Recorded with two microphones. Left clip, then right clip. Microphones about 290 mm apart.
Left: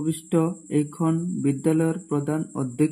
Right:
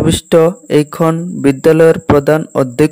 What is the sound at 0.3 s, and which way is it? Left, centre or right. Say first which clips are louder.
Speech: right 16 dB; right.